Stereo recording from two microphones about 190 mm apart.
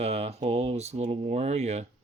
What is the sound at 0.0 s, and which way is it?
Speech, 35° right (ahead or behind).